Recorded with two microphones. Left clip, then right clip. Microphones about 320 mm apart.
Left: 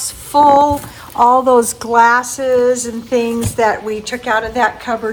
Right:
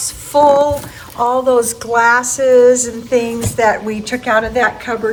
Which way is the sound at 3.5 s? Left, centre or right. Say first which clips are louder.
Right 2 dB; left.